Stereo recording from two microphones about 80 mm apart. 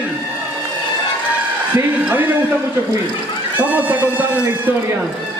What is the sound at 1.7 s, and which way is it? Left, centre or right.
A man's voice, right.